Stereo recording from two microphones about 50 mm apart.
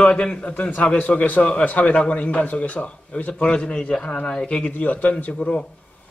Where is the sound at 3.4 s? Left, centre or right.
Centre.